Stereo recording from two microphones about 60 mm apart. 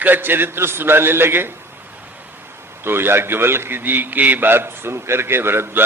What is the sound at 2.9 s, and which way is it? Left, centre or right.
A man's voice, right.